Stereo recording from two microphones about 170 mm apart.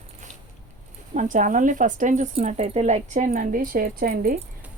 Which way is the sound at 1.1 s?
50° right (ahead or behind).